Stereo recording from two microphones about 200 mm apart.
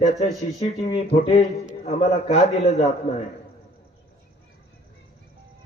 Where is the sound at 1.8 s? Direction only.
35° left (ahead or behind).